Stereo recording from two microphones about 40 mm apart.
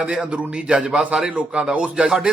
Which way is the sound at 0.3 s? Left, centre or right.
Right.